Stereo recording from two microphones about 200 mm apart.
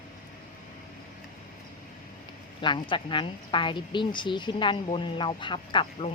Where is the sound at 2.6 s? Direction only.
25° left (ahead or behind).